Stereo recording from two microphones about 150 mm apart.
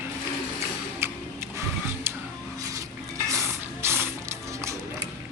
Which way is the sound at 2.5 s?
20° right (ahead or behind).